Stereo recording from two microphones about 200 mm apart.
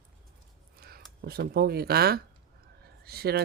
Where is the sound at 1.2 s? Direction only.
50° right (ahead or behind).